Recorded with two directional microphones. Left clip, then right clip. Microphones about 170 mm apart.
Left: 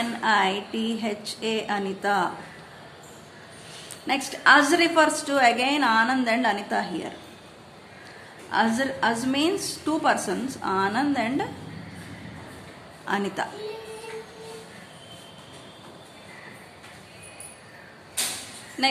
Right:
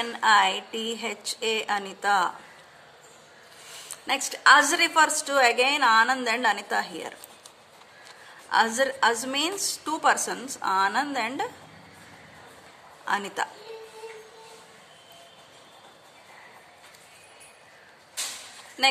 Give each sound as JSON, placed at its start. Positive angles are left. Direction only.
{"t": 0.2, "sound": "speech", "side_deg": -40}
{"t": 3.7, "sound": "a woman's voice", "side_deg": -45}
{"t": 8.5, "sound": "a woman's voice", "side_deg": -45}
{"t": 13.0, "sound": "a woman's voice", "side_deg": -40}